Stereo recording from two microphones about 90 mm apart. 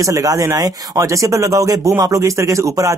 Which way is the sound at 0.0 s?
40° right (ahead or behind).